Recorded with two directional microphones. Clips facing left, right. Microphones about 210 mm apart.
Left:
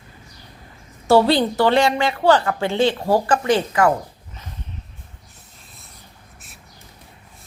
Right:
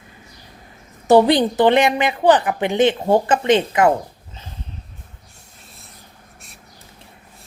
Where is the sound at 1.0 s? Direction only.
20° right (ahead or behind).